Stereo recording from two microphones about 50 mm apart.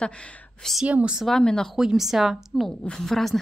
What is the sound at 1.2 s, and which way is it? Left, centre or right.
Speech, centre.